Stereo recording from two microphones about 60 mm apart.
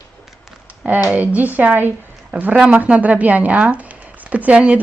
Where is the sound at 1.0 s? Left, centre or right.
Right.